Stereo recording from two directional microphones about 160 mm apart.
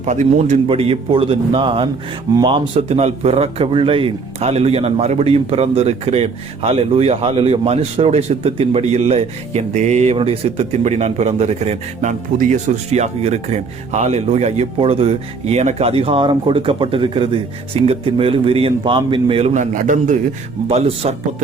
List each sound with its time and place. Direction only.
0.0 s a man's voice: 45° right (ahead or behind)
0.7 s a man's voice: 35° right (ahead or behind)
19.7 s a man's voice: 50° right (ahead or behind)
20.7 s a man's voice: 40° right (ahead or behind)